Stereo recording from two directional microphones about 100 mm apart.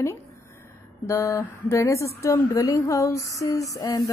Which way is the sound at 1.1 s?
30° left (ahead or behind).